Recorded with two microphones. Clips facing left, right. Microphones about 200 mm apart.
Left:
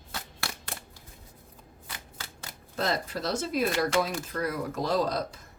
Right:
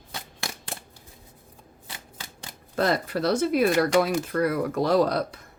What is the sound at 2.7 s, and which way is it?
Speech, 60° right (ahead or behind).